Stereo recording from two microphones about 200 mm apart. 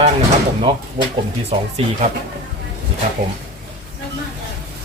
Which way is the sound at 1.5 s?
25° right (ahead or behind).